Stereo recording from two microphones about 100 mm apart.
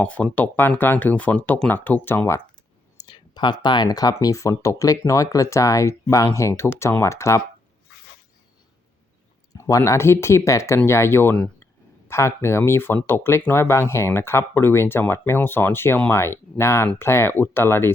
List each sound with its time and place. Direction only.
0.0 s speech: 15° left (ahead or behind)
3.1 s speech: 45° left (ahead or behind); by 7.4 s 30° left (ahead or behind)
9.6 s speech: 30° left (ahead or behind)